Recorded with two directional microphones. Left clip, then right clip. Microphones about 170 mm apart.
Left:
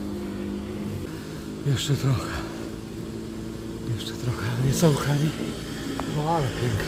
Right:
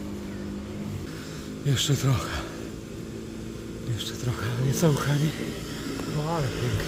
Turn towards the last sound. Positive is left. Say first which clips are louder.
# left 4 dB
turn(degrees=5)  # may be behind; listen again after turning